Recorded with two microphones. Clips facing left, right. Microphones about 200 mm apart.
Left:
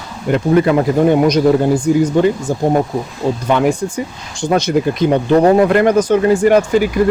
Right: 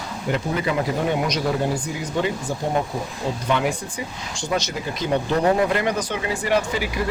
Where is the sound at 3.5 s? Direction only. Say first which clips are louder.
Left 8 dB; 50° left (ahead or behind).